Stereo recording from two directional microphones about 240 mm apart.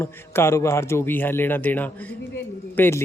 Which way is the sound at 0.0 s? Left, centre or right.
Centre.